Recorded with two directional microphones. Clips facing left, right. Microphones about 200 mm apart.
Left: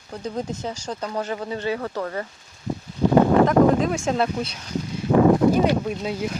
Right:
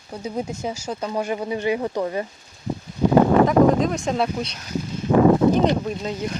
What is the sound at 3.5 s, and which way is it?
Speech, centre (ahead or behind).